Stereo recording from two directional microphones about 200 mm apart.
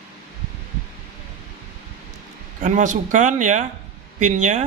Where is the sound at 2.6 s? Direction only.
40° right (ahead or behind).